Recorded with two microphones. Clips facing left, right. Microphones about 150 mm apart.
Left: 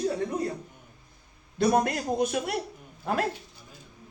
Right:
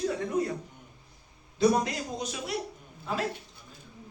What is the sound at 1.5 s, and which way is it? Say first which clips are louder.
A man's voice: left 1 dB; 55° left (ahead or behind).